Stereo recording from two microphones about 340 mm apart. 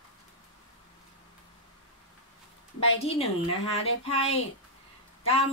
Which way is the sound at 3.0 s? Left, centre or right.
Centre.